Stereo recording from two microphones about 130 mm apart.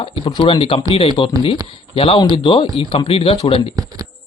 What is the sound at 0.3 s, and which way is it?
Speech, 35° left (ahead or behind).